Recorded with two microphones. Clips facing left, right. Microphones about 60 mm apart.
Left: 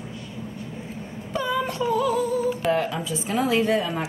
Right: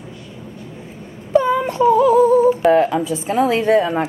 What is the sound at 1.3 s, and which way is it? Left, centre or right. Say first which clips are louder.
Humming: right 10 dB; right.